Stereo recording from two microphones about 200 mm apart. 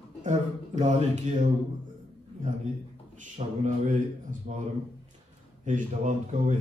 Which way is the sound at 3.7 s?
40° right (ahead or behind).